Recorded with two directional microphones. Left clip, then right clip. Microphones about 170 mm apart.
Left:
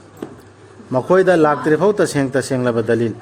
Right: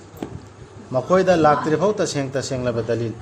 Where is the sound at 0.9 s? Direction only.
65° left (ahead or behind).